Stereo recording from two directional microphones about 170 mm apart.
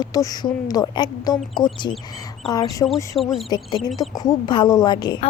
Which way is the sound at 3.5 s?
25° left (ahead or behind).